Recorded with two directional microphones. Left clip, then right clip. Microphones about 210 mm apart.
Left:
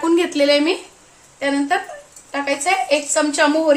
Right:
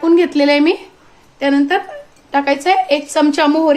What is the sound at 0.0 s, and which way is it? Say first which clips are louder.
Speech: right 4 dB; 20° right (ahead or behind).